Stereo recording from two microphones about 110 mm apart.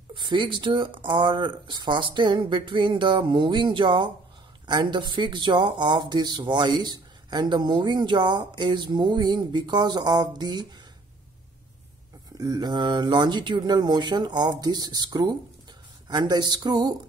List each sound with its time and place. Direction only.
0.1 s speech: 45° right (ahead or behind)
12.4 s speech: 35° right (ahead or behind)